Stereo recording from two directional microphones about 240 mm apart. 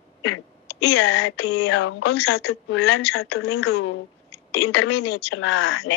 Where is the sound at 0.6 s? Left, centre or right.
Left.